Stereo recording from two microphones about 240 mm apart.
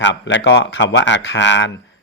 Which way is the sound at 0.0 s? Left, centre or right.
Left.